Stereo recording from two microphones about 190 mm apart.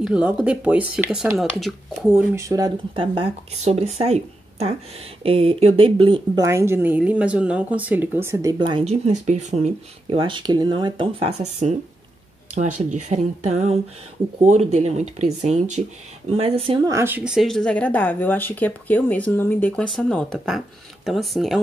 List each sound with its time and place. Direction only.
0.0 s speech: 5° right (ahead or behind); by 6.4 s 25° right (ahead or behind)
6.4 s speech: 15° right (ahead or behind)